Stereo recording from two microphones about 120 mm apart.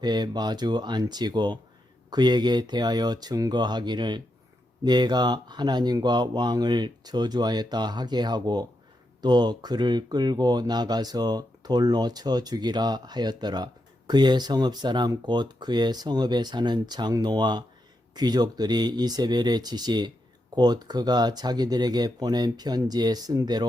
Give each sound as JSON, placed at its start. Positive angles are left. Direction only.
{"t": 0.0, "sound": "speech", "side_deg": -35}